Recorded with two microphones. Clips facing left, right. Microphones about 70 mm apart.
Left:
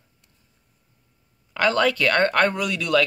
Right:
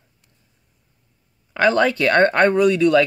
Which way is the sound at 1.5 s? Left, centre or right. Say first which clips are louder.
Right 4 dB; right.